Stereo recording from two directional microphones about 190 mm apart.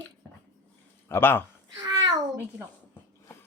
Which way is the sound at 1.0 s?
10° left (ahead or behind).